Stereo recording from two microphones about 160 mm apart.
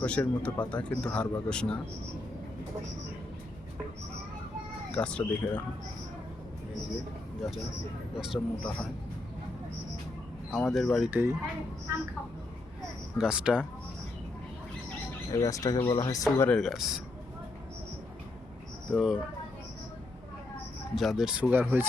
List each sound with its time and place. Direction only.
0.0 s speech: 5° left (ahead or behind)
4.9 s speech: 5° left (ahead or behind)
8.2 s speech: centre (ahead or behind)
10.5 s speech: centre (ahead or behind)
11.1 s speech: 15° right (ahead or behind)
13.1 s speech: 5° right (ahead or behind)
15.3 s speech: 20° left (ahead or behind)
16.5 s speech: centre (ahead or behind)
18.9 s speech: 5° right (ahead or behind)
20.9 s speech: centre (ahead or behind)